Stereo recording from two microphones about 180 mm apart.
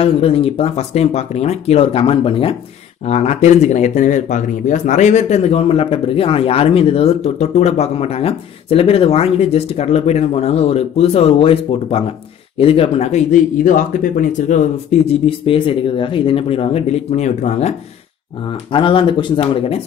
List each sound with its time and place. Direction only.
0.0 s speech: 30° left (ahead or behind)
18.7 s speech: 30° left (ahead or behind)